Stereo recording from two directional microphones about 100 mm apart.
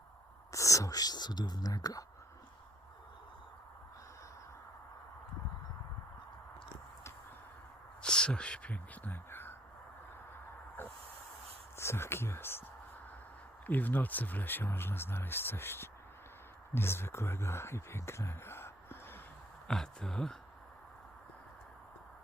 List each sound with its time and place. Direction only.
0.5 s speech: 35° left (ahead or behind)
8.0 s speech: 10° left (ahead or behind)
11.8 s speech: 25° left (ahead or behind)
13.7 s speech: 20° left (ahead or behind)
19.6 s speech: 5° left (ahead or behind)